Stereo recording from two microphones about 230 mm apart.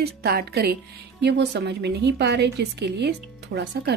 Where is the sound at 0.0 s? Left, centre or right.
Right.